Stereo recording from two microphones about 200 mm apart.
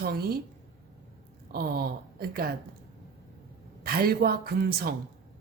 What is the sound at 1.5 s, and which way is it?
Speech, 50° right (ahead or behind).